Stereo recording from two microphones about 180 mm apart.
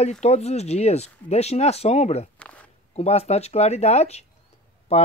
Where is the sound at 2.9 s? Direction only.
35° left (ahead or behind).